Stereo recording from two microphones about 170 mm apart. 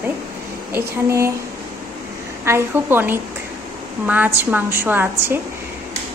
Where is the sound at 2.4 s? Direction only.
15° right (ahead or behind).